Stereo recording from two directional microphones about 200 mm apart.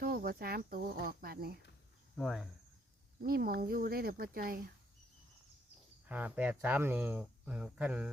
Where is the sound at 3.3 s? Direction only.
50° right (ahead or behind).